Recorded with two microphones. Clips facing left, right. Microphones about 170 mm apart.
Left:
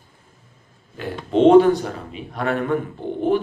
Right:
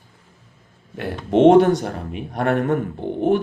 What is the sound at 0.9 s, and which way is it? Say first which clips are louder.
Speech: right 2 dB; 65° right (ahead or behind).